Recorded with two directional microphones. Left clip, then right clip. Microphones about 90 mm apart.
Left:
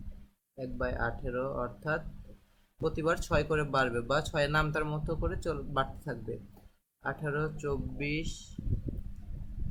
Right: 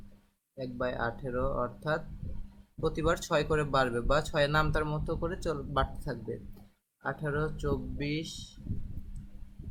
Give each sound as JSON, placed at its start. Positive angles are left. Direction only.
{"t": 0.6, "sound": "speech", "side_deg": -20}